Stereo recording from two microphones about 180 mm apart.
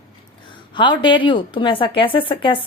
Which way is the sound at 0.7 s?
25° left (ahead or behind).